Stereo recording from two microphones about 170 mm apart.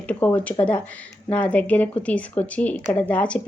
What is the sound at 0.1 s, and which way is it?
A woman's voice, 10° left (ahead or behind).